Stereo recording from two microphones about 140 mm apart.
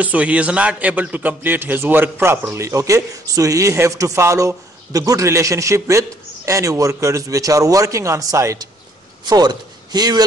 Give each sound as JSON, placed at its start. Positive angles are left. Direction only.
{"t": 0.0, "sound": "a man's voice", "side_deg": -10}